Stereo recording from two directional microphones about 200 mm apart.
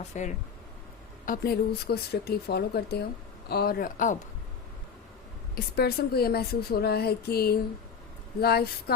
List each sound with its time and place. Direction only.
0.1 s a woman's voice: 35° left (ahead or behind)
5.5 s a woman's voice: 50° left (ahead or behind)